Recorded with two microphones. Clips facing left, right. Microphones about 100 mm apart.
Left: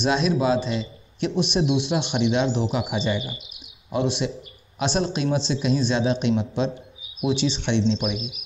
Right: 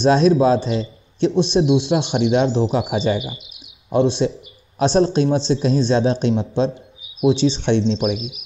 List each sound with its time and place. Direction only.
0.0 s a man's voice: 35° right (ahead or behind)